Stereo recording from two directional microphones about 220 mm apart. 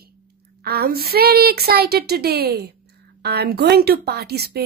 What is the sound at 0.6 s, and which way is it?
A woman's voice, 45° right (ahead or behind).